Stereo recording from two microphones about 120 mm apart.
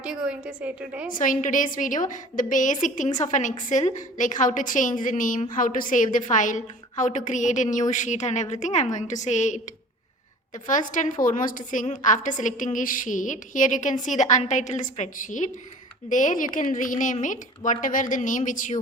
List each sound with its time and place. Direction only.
0.0 s a woman's voice: 10° right (ahead or behind)
1.2 s a woman's voice: 90° left